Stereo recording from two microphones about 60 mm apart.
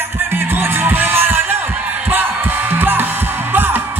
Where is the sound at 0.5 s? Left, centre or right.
Right.